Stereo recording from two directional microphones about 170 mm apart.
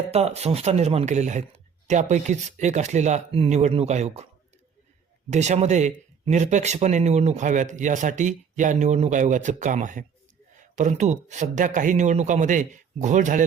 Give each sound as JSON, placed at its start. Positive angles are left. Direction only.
{"t": 0.1, "sound": "speech", "side_deg": -35}
{"t": 5.3, "sound": "speech", "side_deg": -45}